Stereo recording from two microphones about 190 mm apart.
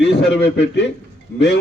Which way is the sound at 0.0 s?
65° left (ahead or behind).